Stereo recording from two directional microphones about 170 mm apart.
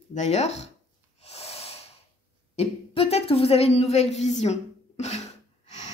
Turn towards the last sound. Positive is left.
turn(degrees=40)  # may be behind; listen again after turning